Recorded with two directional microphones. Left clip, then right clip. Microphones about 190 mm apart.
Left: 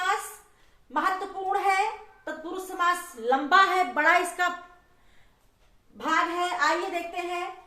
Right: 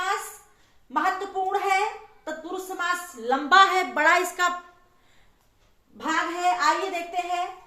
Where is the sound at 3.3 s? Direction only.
20° right (ahead or behind).